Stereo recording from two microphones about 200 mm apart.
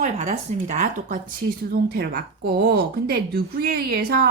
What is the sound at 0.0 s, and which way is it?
Speech, 35° right (ahead or behind).